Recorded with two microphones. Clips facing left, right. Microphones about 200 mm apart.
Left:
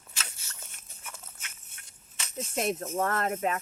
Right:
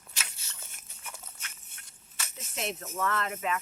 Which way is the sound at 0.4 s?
Centre (ahead or behind).